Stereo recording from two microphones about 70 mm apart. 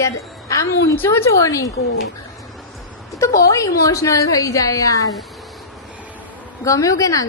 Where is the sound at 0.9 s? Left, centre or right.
Left.